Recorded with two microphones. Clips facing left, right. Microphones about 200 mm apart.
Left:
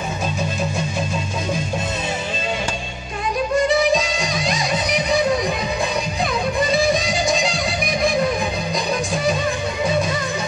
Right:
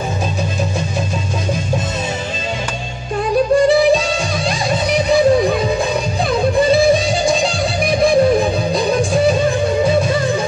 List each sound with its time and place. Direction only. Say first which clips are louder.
3.6 s music: right 6 dB; 35° right (ahead or behind)
6.7 s music: right 6 dB; 30° right (ahead or behind)